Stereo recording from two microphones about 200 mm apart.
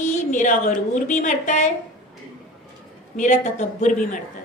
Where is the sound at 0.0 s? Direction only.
35° left (ahead or behind).